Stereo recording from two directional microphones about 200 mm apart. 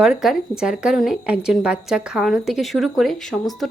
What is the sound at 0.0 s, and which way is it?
A woman's voice, 5° right (ahead or behind).